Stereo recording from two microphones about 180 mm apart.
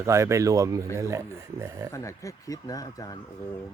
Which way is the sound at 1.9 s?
15° left (ahead or behind).